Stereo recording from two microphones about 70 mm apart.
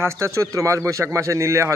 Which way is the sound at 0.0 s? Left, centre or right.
Right.